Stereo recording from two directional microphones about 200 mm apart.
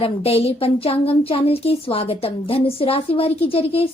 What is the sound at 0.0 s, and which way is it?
A woman's voice, 30° left (ahead or behind).